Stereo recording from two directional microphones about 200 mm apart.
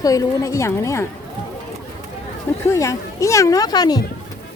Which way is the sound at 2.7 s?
15° left (ahead or behind).